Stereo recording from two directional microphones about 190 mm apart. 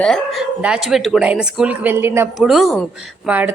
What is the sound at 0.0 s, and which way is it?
A woman's voice, centre (ahead or behind).